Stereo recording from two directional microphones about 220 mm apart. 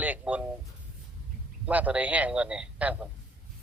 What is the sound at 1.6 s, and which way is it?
A man's voice, 5° right (ahead or behind).